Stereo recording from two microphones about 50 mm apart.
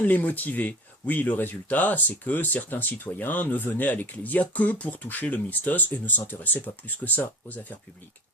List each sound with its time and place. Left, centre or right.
0.0 s speech: left
7.0 s speech: centre
7.4 s speech: left